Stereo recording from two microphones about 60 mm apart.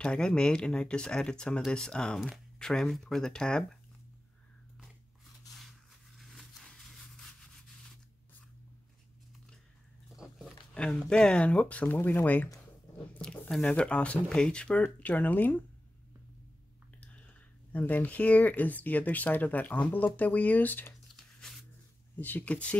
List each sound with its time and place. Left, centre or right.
0.0 s speech: centre
6.1 s a sound: centre
6.6 s rub: centre
10.1 s biting: centre
10.7 s speech: centre
11.9 s speech: left
13.5 s speech: centre
17.0 s speech: left
22.1 s speech: left